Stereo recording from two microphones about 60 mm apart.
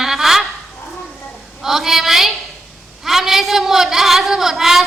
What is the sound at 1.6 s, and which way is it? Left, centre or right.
A woman's voice, centre.